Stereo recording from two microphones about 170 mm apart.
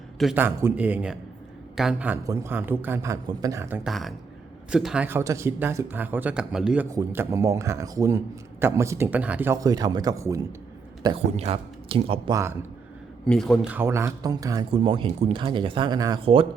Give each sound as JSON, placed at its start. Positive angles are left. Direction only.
{"t": 0.3, "sound": "a woman's voice", "side_deg": -10}
{"t": 2.2, "sound": "speech", "side_deg": -20}
{"t": 3.8, "sound": "speech", "side_deg": 0}
{"t": 6.9, "sound": "speech", "side_deg": -15}
{"t": 11.0, "sound": "speech", "side_deg": -35}
{"t": 12.3, "sound": "speech", "side_deg": -15}
{"t": 13.2, "sound": "speech", "side_deg": 5}
{"t": 13.7, "sound": "speech", "side_deg": -15}